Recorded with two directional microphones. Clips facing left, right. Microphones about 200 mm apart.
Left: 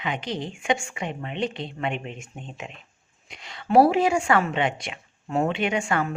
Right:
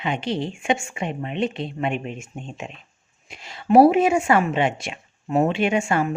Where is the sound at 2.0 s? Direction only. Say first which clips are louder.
Right 4 dB; 25° right (ahead or behind).